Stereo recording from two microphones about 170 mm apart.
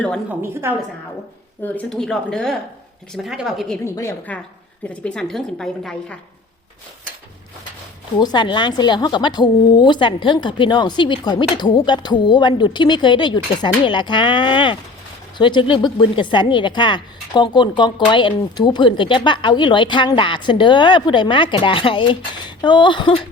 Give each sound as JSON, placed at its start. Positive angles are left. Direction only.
{"t": 0.3, "sound": "a woman's voice", "side_deg": -15}
{"t": 1.6, "sound": "a woman's voice", "side_deg": 5}
{"t": 3.8, "sound": "a woman's voice", "side_deg": 15}
{"t": 4.8, "sound": "a woman's voice", "side_deg": 5}
{"t": 8.2, "sound": "a woman's voice", "side_deg": 25}